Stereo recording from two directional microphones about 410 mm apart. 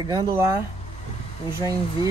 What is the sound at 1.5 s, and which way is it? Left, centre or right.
Speech, centre.